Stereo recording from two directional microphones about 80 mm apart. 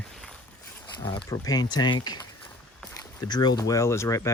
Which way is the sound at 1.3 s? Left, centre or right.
Left.